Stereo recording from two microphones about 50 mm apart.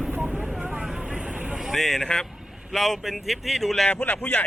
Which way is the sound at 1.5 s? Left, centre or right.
Centre.